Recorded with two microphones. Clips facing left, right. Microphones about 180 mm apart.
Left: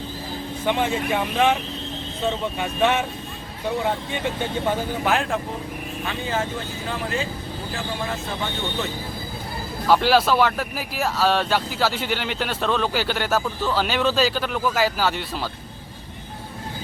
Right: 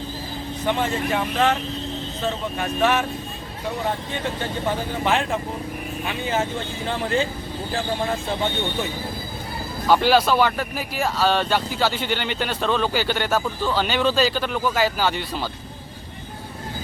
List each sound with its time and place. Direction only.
0.7 s speech: 15° left (ahead or behind)
2.6 s speech: 15° left (ahead or behind)
5.0 s speech: centre (ahead or behind)
6.1 s speech: 20° right (ahead or behind)
9.8 s speech: centre (ahead or behind)